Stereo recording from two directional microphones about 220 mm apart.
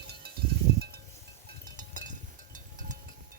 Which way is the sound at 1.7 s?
35° right (ahead or behind).